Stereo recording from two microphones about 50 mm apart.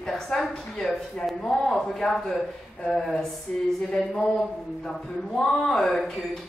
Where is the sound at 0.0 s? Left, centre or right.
Centre.